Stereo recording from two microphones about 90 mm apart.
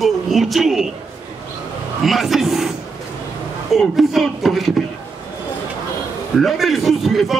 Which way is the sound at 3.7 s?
Centre (ahead or behind).